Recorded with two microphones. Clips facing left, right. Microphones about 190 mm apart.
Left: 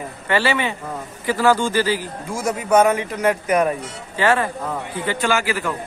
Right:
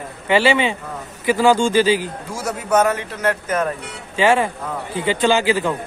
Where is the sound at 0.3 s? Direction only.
20° right (ahead or behind).